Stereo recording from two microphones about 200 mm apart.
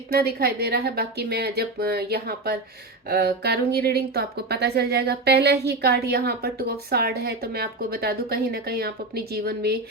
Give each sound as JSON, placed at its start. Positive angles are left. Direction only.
{"t": 0.1, "sound": "speech", "side_deg": -50}